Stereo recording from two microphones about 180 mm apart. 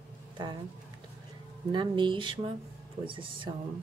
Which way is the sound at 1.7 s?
25° right (ahead or behind).